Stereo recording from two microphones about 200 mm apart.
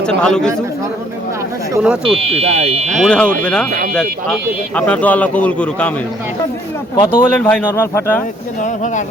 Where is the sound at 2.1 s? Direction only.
30° right (ahead or behind).